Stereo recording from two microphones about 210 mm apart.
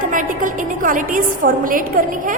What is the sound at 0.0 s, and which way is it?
Music, 40° right (ahead or behind).